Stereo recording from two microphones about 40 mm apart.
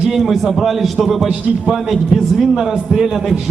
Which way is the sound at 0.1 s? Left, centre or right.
Centre.